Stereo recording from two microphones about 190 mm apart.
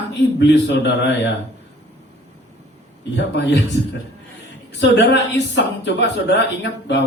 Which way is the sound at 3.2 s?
65° left (ahead or behind).